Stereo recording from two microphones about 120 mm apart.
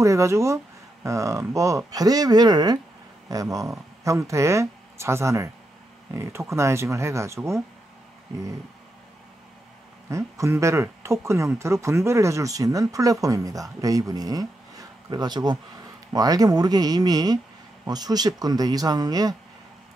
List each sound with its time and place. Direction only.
0.0 s speech: 25° right (ahead or behind)
10.0 s speech: 25° right (ahead or behind)